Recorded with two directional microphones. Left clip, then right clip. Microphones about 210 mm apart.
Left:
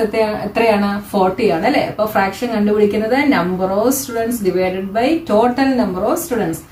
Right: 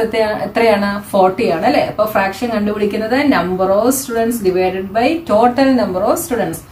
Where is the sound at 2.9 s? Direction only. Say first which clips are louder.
Even; 30° right (ahead or behind).